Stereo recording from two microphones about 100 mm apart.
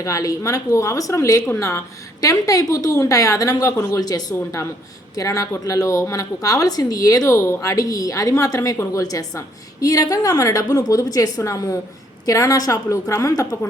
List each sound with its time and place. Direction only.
0.0 s a woman's voice: 35° left (ahead or behind)